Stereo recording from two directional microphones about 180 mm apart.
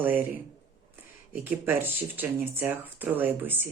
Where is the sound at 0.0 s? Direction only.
10° right (ahead or behind).